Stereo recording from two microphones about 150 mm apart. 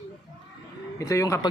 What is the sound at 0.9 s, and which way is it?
Speech, 20° left (ahead or behind).